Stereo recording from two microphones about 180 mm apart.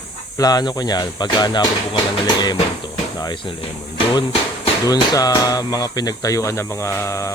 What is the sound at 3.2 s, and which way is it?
Speech, 25° left (ahead or behind).